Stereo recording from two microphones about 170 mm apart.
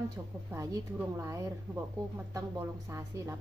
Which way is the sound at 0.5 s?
15° right (ahead or behind).